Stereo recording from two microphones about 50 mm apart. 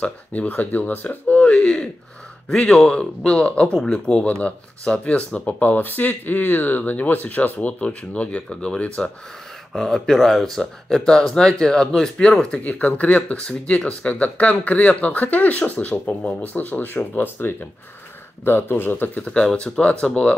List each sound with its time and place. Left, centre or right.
0.0 s speech: left
7.8 s speech: left
9.8 s speech: centre; by 19.2 s left
19.2 s speech: left